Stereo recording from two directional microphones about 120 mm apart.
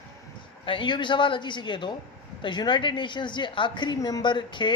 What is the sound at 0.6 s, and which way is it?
A woman's voice, 45° left (ahead or behind).